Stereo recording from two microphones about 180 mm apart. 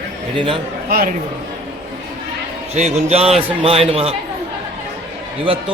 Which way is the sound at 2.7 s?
35° right (ahead or behind).